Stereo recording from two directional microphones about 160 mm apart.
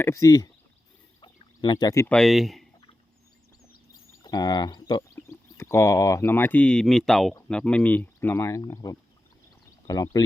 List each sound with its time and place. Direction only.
0.0 s speech: 20° left (ahead or behind)
1.2 s a sound: 30° left (ahead or behind)
2.0 s speech: 5° left (ahead or behind)
4.2 s speech: 25° left (ahead or behind)